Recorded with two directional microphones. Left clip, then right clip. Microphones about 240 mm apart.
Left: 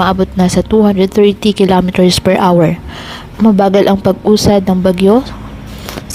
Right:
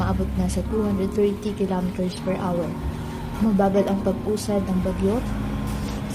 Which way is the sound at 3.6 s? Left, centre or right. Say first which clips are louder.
Left 11 dB; left.